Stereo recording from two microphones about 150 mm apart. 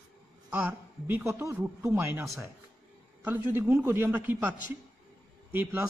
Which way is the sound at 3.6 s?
15° right (ahead or behind).